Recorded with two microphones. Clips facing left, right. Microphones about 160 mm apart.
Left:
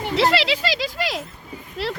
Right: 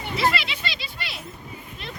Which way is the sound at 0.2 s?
80° left.